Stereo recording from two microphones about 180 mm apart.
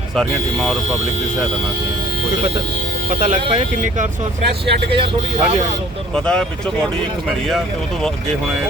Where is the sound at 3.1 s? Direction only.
40° right (ahead or behind).